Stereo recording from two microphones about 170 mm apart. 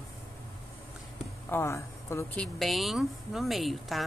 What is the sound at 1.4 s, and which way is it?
Speech, 15° left (ahead or behind).